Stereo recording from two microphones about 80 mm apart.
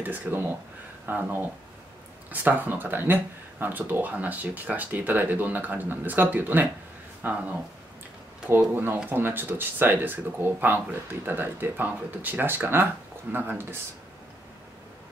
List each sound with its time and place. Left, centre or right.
0.0 s speech: right
8.5 s speech: right